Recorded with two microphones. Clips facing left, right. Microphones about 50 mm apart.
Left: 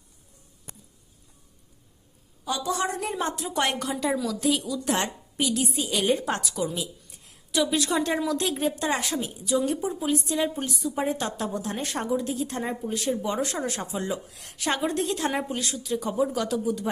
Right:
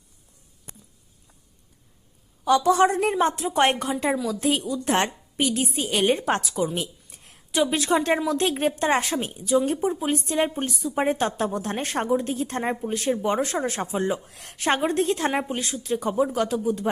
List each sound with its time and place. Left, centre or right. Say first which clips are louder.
2.6 s a woman's voice: right 6 dB; right
6.7 s a sound: right 3 dB; right
7.6 s a woman's voice: right 3 dB; right